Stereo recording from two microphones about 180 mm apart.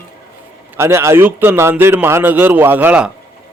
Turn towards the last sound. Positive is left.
turn(degrees=-10)  # may be behind; listen again after turning